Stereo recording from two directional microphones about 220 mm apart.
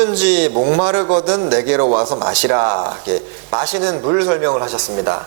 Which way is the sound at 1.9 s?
30° right (ahead or behind).